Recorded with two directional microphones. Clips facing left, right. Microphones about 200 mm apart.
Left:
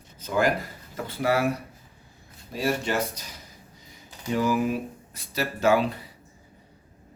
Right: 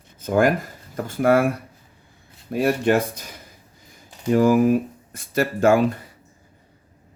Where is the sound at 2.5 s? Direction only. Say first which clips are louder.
Right 7 dB; 55° right (ahead or behind).